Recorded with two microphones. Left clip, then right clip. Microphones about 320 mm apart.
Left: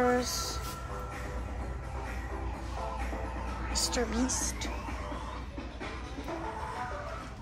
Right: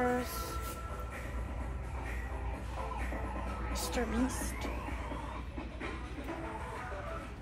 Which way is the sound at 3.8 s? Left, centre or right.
Centre.